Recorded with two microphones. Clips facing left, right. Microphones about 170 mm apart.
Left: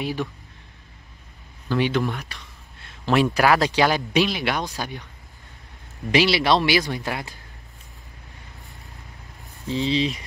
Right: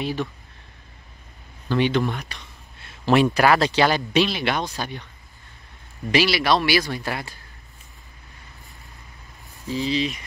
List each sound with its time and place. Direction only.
0.0 s speech: 10° left (ahead or behind)
1.7 s speech: 5° left (ahead or behind)
6.1 s speech: 25° left (ahead or behind)
9.8 s speech: 30° left (ahead or behind)